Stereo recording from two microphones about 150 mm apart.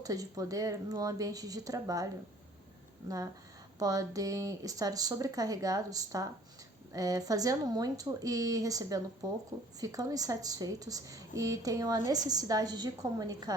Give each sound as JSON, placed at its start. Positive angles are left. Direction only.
{"t": 0.0, "sound": "a woman's voice", "side_deg": -25}
{"t": 3.8, "sound": "a woman's voice", "side_deg": -25}